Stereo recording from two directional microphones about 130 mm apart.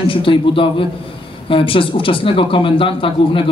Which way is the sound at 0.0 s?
40° left (ahead or behind).